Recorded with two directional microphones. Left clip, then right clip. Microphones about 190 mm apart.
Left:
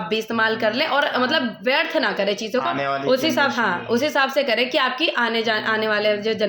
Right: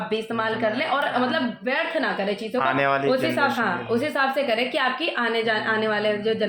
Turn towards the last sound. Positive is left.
turn(degrees=25)  # may be behind; listen again after turning